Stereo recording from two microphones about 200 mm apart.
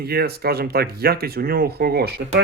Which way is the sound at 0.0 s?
50° right (ahead or behind).